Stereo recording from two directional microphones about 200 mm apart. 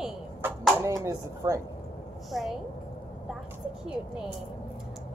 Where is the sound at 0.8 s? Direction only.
15° right (ahead or behind).